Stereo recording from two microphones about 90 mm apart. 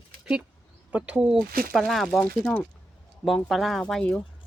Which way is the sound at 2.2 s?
15° left (ahead or behind).